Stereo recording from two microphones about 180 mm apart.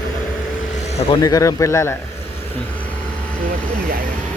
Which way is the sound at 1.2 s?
20° left (ahead or behind).